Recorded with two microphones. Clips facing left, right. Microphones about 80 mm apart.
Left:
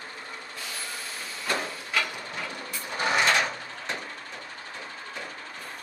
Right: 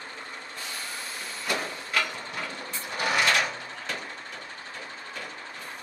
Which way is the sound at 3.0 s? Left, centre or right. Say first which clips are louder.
Left 1 dB; left.